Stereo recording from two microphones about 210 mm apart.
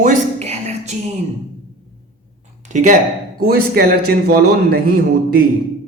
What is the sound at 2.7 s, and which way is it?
A man's voice, 35° right (ahead or behind).